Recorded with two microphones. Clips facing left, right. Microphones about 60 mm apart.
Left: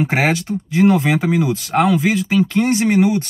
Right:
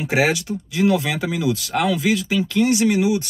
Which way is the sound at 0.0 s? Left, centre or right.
Left.